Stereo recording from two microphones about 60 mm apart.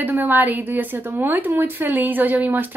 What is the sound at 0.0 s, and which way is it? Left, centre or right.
Speech, right.